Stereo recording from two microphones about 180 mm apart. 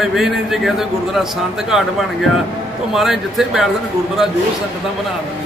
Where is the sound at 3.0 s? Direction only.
Centre (ahead or behind).